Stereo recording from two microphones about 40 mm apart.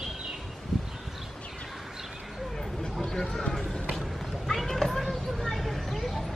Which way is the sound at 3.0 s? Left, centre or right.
Centre.